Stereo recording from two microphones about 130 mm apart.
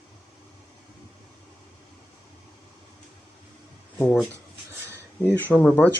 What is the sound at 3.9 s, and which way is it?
Speech, 10° left (ahead or behind).